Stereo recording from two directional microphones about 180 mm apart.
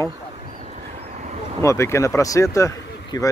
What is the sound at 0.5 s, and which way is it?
Vehicle, 40° right (ahead or behind).